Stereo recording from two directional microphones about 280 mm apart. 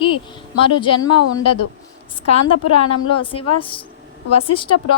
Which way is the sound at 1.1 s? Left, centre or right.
Left.